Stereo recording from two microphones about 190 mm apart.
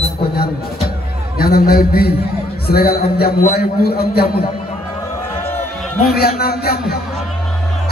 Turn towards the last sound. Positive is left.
turn(degrees=55)  # may be behind; listen again after turning